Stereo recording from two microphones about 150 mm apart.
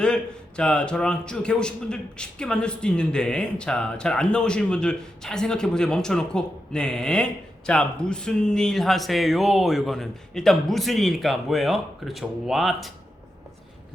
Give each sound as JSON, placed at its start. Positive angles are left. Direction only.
{"t": 0.0, "sound": "a man's voice", "side_deg": 5}